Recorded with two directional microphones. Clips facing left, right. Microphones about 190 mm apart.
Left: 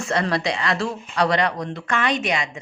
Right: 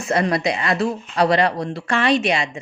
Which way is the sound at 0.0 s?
20° right (ahead or behind).